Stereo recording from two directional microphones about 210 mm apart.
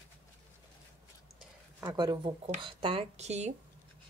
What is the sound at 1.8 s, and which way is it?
Speech, 20° right (ahead or behind).